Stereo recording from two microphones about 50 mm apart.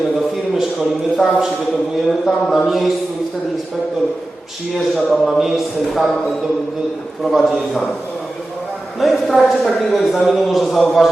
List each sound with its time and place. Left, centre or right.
0.5 s speech: centre
2.0 s a man's voice: centre
5.1 s a man's voice: centre
7.3 s a man's voice: centre
9.0 s a man's voice: centre